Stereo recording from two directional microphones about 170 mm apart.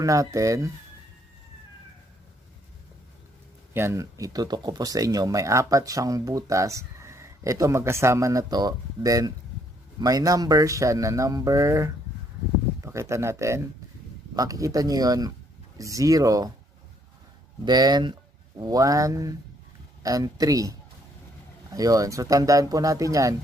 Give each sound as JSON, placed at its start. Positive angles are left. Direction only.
{"t": 0.0, "sound": "speech", "side_deg": -20}
{"t": 3.7, "sound": "speech", "side_deg": -15}
{"t": 17.6, "sound": "speech", "side_deg": -25}
{"t": 21.7, "sound": "speech", "side_deg": -20}